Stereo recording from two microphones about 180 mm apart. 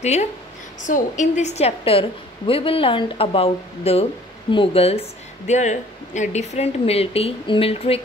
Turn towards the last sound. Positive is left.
turn(degrees=30)  # may be behind; listen again after turning